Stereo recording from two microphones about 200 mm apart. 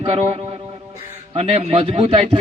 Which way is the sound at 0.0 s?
30° right (ahead or behind).